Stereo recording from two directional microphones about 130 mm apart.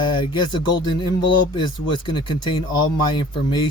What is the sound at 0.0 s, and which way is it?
Speech, 35° left (ahead or behind).